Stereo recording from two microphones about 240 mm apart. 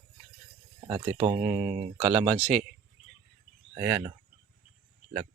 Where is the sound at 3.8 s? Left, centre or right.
Centre.